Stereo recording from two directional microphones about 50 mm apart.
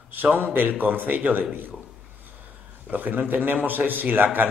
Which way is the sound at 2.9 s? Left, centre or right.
Right.